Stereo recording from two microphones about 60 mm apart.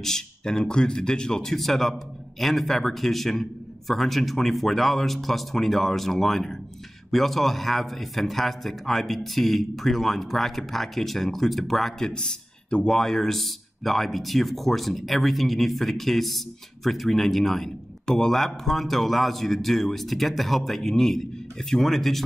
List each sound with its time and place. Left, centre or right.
0.0 s speech: centre
12.1 s speech: centre